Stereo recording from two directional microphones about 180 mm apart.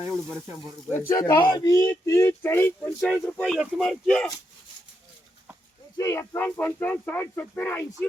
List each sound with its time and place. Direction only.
0.9 s speech: 15° left (ahead or behind)
6.0 s speech: 15° left (ahead or behind)